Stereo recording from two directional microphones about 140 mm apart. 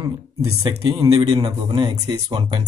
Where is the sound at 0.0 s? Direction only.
25° right (ahead or behind).